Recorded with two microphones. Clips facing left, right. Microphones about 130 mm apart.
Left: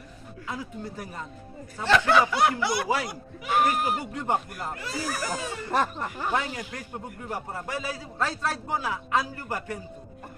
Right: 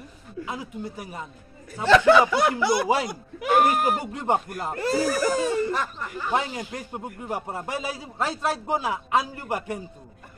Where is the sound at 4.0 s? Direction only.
25° right (ahead or behind).